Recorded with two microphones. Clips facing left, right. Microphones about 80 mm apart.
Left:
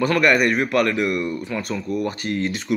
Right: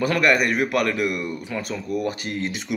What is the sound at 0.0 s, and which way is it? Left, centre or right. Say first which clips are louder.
Speech: left 2 dB; centre.